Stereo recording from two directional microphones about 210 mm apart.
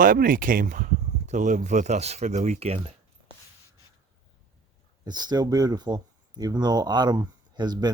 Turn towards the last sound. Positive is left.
turn(degrees=-20)  # may be behind; listen again after turning